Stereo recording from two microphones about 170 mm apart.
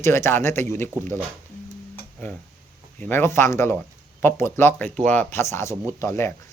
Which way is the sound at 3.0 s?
15° left (ahead or behind).